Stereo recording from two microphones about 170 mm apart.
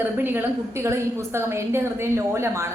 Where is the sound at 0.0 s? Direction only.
10° right (ahead or behind).